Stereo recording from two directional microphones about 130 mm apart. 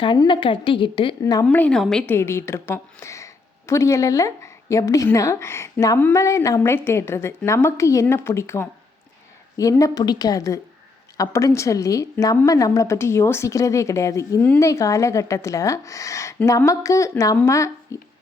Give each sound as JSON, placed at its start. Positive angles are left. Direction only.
{"t": 0.0, "sound": "a woman's voice", "side_deg": 40}
{"t": 1.2, "sound": "a woman's voice", "side_deg": 25}
{"t": 1.5, "sound": "a woman's voice", "side_deg": 10}
{"t": 2.0, "sound": "a woman's voice", "side_deg": 20}